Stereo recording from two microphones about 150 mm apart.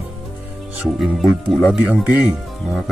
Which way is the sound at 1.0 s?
Centre (ahead or behind).